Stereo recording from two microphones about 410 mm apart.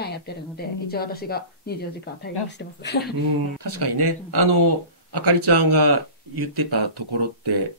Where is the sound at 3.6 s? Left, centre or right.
Right.